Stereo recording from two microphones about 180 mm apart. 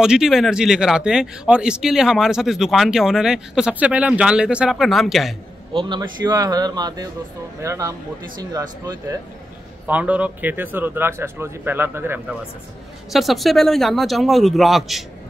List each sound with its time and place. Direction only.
0.0 s speech: 5° right (ahead or behind)
5.7 s a man's voice: 25° right (ahead or behind)
13.1 s speech: centre (ahead or behind)